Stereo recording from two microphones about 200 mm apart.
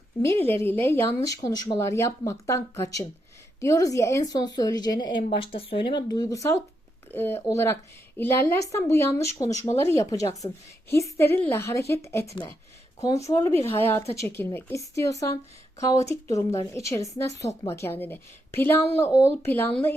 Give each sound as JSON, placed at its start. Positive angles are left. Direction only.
{"t": 0.6, "sound": "a woman's voice", "side_deg": 10}